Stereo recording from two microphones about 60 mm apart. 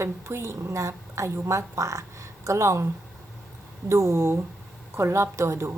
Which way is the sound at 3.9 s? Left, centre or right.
Right.